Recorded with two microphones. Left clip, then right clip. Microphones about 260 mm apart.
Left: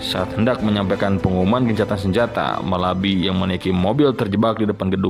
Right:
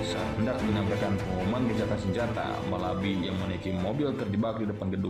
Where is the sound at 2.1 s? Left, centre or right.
Left.